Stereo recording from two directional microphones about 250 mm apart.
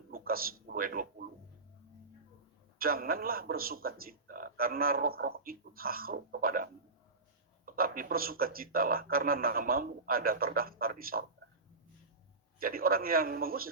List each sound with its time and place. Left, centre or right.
0.1 s a sound: right
2.7 s a man's voice: right
12.5 s a man's voice: right